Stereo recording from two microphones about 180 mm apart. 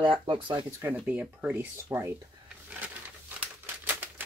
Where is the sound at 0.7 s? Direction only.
10° right (ahead or behind).